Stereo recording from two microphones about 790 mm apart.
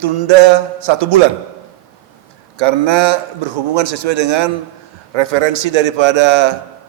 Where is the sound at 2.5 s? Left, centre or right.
Right.